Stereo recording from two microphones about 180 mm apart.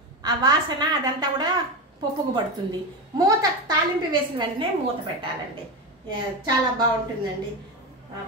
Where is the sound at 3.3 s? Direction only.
25° right (ahead or behind).